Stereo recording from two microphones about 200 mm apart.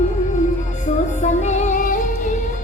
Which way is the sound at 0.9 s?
35° left (ahead or behind).